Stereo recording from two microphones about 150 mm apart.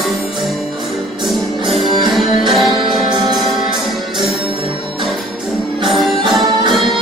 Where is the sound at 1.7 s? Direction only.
Centre (ahead or behind).